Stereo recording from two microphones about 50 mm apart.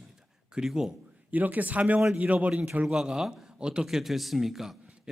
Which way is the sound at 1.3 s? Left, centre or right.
Right.